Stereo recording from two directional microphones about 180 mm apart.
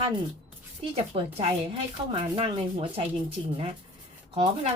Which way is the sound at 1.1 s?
30° right (ahead or behind).